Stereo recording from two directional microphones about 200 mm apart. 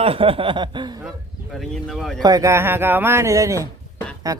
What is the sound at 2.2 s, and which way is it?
Speech, 15° right (ahead or behind).